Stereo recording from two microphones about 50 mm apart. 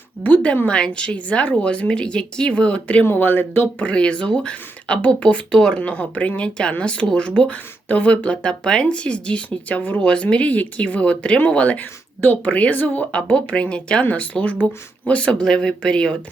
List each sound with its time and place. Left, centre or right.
0.4 s speech: left
0.7 s speech: left
3.0 s speech: left
3.8 s speech: left